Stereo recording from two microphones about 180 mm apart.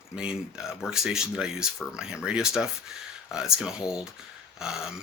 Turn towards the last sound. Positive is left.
turn(degrees=-5)  # may be behind; listen again after turning